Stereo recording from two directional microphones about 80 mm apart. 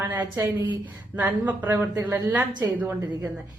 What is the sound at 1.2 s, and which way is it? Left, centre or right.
Speech, centre.